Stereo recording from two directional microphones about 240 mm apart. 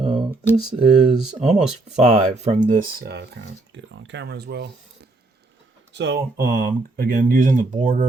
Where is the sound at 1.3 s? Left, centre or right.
Right.